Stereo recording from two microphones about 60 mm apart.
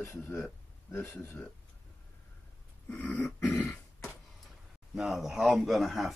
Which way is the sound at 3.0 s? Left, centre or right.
Left.